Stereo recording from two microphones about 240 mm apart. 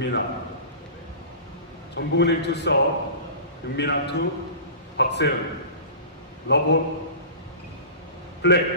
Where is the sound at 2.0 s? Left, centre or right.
Left.